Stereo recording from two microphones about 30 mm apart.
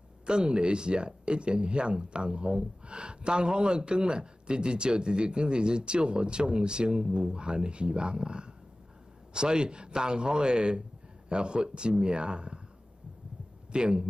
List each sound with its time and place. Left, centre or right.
0.3 s a man's voice: right
13.7 s speech: right